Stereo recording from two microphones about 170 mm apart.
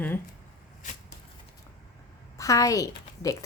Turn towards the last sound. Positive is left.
turn(degrees=20)  # may be behind; listen again after turning